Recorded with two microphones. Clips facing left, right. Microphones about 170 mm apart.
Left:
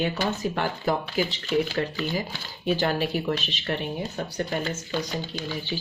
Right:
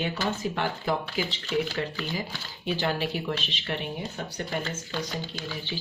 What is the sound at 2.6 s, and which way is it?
Speech, 45° left (ahead or behind).